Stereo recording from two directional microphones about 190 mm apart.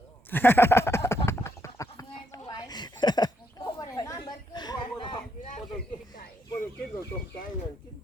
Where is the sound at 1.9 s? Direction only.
20° left (ahead or behind).